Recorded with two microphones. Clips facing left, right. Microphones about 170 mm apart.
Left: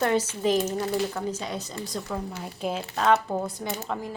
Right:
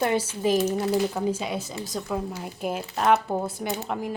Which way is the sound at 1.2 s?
20° right (ahead or behind).